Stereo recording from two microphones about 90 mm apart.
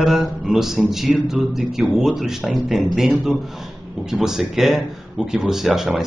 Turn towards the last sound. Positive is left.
turn(degrees=-5)  # may be behind; listen again after turning